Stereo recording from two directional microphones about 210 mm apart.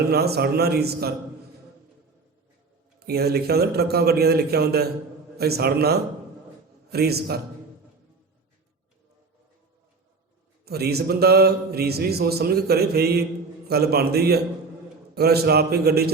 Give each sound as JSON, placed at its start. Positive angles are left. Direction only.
{"t": 0.1, "sound": "speech", "side_deg": -50}
{"t": 3.1, "sound": "speech", "side_deg": -50}
{"t": 10.7, "sound": "speech", "side_deg": -50}